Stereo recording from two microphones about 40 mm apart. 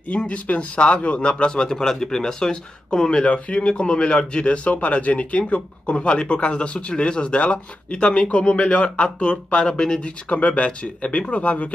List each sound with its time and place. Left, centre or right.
0.1 s speech: left